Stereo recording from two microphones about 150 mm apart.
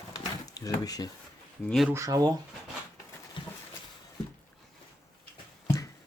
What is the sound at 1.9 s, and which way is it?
Speech, 20° right (ahead or behind).